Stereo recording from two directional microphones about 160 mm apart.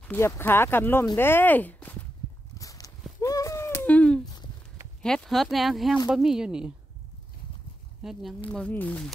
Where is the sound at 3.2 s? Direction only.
20° left (ahead or behind); by 4.3 s 5° left (ahead or behind).